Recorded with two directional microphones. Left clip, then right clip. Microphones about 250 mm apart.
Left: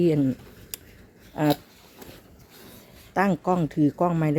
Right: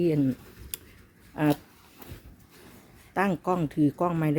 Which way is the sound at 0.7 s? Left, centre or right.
Centre.